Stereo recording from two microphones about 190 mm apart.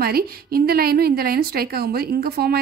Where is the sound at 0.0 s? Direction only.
50° right (ahead or behind).